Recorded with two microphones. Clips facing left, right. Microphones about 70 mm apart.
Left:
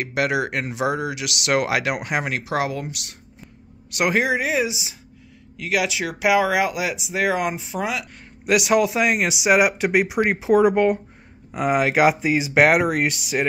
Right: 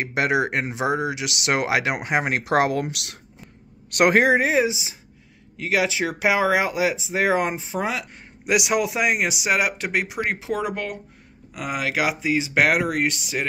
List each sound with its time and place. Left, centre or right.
0.0 s speech: right
2.4 s speech: right
2.9 s speech: right
3.9 s speech: right
8.5 s speech: centre
9.4 s speech: centre